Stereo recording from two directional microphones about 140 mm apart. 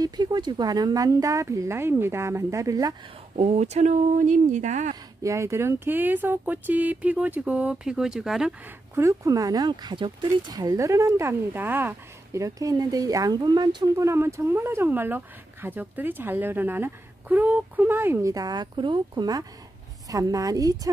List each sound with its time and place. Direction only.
0.0 s speech: 30° right (ahead or behind)
3.3 s speech: 50° right (ahead or behind)
5.2 s speech: 20° right (ahead or behind); by 8.5 s 5° right (ahead or behind)
8.6 s speech: 20° right (ahead or behind)